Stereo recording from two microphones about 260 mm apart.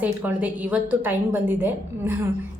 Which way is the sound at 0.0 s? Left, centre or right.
Centre.